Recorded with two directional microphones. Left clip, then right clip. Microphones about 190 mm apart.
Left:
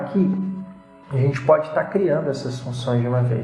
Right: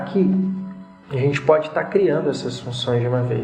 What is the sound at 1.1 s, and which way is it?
Speech, 40° right (ahead or behind).